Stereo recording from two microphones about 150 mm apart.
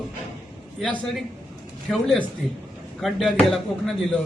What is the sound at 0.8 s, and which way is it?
Speech, centre (ahead or behind).